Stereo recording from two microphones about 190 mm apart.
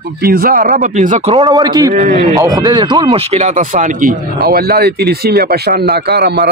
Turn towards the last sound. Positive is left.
turn(degrees=-60)  # may be behind; listen again after turning